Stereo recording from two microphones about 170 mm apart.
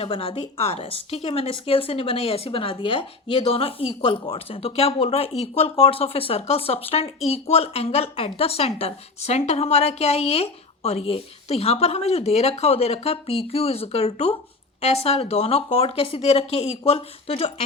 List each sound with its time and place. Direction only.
0.0 s a woman's voice: 35° left (ahead or behind)